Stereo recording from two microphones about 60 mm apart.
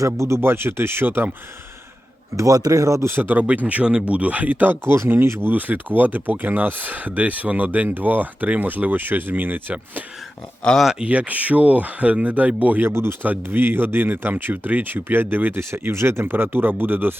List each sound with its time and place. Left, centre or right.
0.0 s speech: right
2.3 s speech: right
3.1 s speech: right
11.0 s speech: right
12.9 s speech: right
13.2 s speech: right
15.9 s speech: right